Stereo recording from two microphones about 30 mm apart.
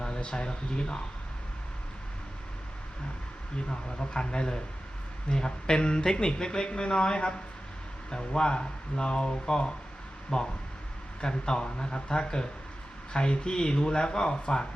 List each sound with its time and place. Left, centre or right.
0.0 s speech: left
3.7 s speech: left